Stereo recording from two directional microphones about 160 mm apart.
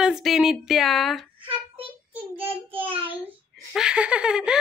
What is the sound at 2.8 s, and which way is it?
Speech, 35° right (ahead or behind).